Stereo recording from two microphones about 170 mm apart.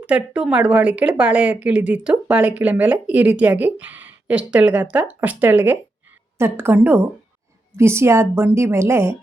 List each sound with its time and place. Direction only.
0.0 s speech: 5° right (ahead or behind)